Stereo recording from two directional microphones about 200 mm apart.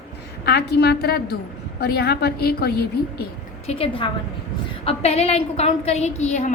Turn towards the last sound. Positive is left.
turn(degrees=35)  # may be behind; listen again after turning